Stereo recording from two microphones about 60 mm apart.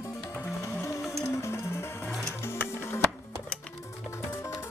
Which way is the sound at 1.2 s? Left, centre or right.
Left.